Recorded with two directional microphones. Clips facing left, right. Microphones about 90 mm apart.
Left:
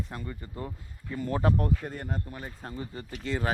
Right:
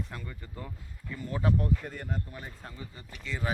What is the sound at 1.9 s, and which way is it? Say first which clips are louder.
Speech: left 2 dB; 40° left (ahead or behind).